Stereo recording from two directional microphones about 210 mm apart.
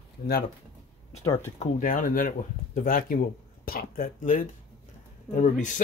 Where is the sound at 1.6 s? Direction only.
40° left (ahead or behind).